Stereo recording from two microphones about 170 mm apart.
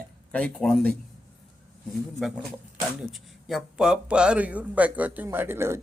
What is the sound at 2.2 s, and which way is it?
A man's voice, centre (ahead or behind).